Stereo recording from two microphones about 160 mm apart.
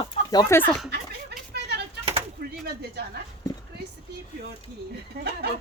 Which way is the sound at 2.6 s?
90° right.